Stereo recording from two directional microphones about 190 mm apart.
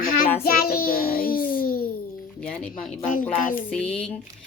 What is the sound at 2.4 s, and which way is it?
Speech, 5° left (ahead or behind).